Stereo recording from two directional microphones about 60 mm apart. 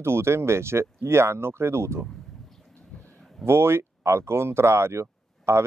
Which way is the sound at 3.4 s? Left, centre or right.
Right.